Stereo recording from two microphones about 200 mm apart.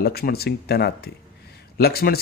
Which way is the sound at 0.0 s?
50° left (ahead or behind).